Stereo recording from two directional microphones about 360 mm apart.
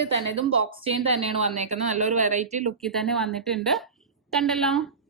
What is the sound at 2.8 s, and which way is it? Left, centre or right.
A woman's voice, centre.